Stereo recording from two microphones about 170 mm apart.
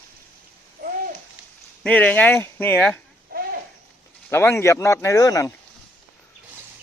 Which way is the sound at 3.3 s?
60° right (ahead or behind).